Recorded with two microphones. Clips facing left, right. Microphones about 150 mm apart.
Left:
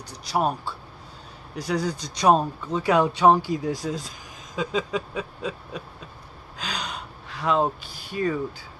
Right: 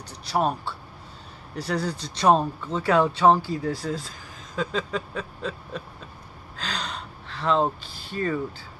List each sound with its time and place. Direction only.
0.3 s speech: 10° left (ahead or behind)
6.5 s gasp: 10° left (ahead or behind)